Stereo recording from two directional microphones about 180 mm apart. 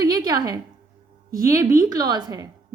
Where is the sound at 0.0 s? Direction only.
20° right (ahead or behind).